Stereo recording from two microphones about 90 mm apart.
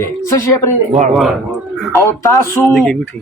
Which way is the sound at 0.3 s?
30° left (ahead or behind).